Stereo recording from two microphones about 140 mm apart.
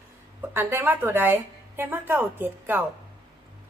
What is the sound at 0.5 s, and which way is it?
A woman's voice, 15° right (ahead or behind).